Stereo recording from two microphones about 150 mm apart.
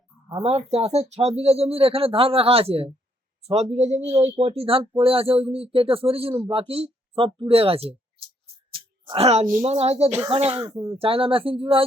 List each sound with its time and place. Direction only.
0.4 s speech: 40° right (ahead or behind)
8.7 s a sound: 35° right (ahead or behind)
9.6 s speech: 45° right (ahead or behind)
10.6 s speech: 20° right (ahead or behind)
10.9 s speech: 40° right (ahead or behind)